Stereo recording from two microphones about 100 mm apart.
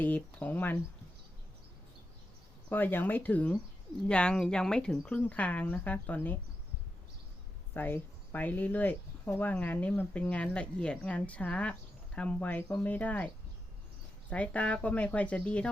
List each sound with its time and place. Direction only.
0.0 s speech: 15° left (ahead or behind)
2.6 s speech: 20° left (ahead or behind)
7.7 s speech: 20° left (ahead or behind)